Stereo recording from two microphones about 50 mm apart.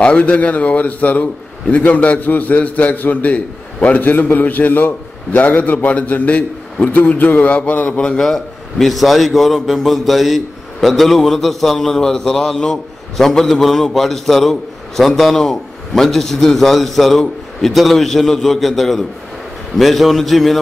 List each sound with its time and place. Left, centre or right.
0.0 s a man's voice: left
7.9 s a man's voice: left
8.7 s a man's voice: centre